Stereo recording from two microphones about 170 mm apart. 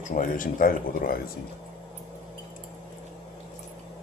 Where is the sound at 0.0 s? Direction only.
50° left (ahead or behind).